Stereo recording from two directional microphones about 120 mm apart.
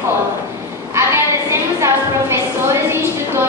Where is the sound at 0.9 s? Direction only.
20° right (ahead or behind).